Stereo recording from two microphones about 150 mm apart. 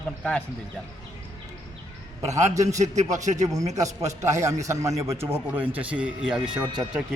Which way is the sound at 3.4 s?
25° right (ahead or behind).